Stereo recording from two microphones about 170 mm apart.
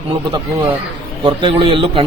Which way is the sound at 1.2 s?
30° right (ahead or behind).